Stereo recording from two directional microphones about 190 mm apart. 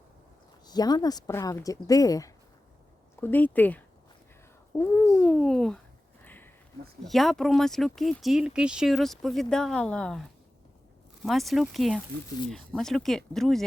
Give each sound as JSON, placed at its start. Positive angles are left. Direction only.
{"t": 0.6, "sound": "speech", "side_deg": 20}
{"t": 6.2, "sound": "a sound", "side_deg": 10}
{"t": 7.0, "sound": "speech", "side_deg": 0}